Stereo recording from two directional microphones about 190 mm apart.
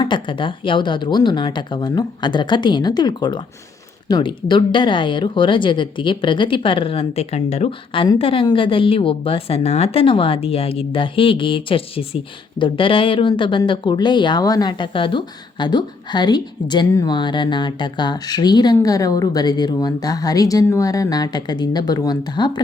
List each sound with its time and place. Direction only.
0.0 s speech: 25° left (ahead or behind)